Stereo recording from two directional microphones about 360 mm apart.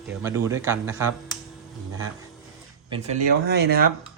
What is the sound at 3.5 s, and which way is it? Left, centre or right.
Speech, right.